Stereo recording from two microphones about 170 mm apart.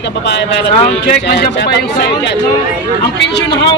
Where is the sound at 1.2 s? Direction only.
75° left (ahead or behind).